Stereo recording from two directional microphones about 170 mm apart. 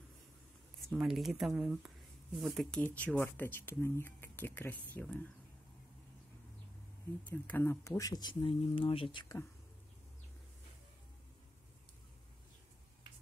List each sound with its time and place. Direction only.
0.8 s speech: centre (ahead or behind)
7.2 s speech: 10° left (ahead or behind); by 9.4 s 30° left (ahead or behind)